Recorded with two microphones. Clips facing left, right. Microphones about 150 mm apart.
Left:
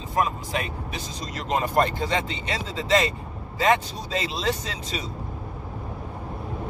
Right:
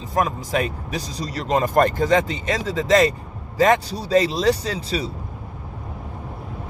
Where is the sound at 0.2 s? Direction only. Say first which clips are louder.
Right 4 dB; 45° right (ahead or behind).